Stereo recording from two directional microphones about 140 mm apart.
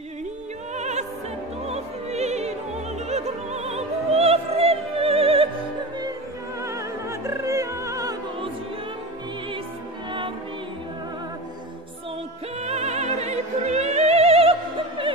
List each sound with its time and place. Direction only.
0.7 s opera: 55° right (ahead or behind)
6.6 s opera: 20° right (ahead or behind)
12.6 s opera: 50° right (ahead or behind)